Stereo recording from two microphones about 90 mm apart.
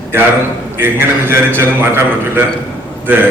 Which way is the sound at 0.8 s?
25° right (ahead or behind).